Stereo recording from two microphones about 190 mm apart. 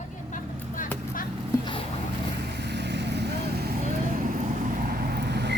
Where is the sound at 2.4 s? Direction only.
60° right (ahead or behind).